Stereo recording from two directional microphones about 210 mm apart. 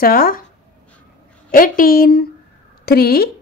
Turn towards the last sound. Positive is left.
turn(degrees=45)  # may be behind; listen again after turning